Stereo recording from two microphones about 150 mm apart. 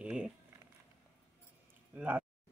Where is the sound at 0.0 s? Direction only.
10° right (ahead or behind).